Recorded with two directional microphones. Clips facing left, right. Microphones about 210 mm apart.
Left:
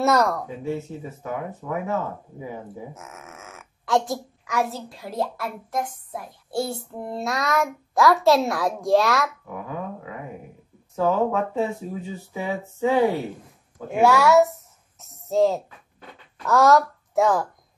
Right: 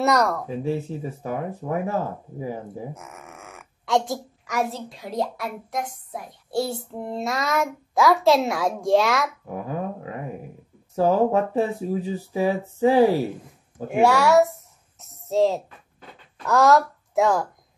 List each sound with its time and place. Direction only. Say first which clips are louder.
0.0 s speech: left 1 dB; 5° left (ahead or behind)
0.7 s speech: right 2 dB; 30° right (ahead or behind)
2.9 s speech: right 1 dB; centre (ahead or behind)
11.0 s speech: right 3 dB; 35° right (ahead or behind)
13.9 s a sound: even; centre (ahead or behind)
16.4 s speech: even; centre (ahead or behind)